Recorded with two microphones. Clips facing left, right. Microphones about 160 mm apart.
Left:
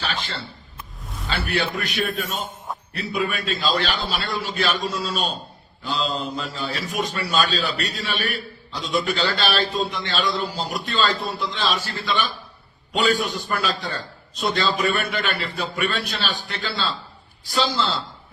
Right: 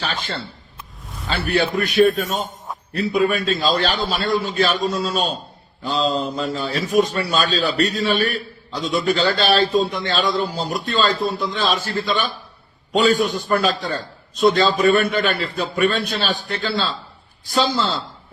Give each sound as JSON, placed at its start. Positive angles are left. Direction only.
{"t": 0.8, "sound": "a sound", "side_deg": 0}
{"t": 1.3, "sound": "a man's voice", "side_deg": -45}
{"t": 5.8, "sound": "mantra", "side_deg": -40}
{"t": 7.3, "sound": "a man's voice", "side_deg": -45}